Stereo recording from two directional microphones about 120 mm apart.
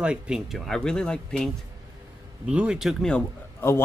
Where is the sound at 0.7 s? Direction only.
5° left (ahead or behind).